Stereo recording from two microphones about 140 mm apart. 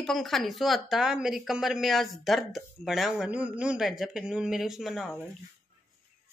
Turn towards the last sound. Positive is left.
turn(degrees=0)  # may be behind; listen again after turning